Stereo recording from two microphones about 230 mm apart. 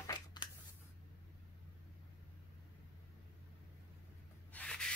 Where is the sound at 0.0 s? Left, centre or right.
Centre.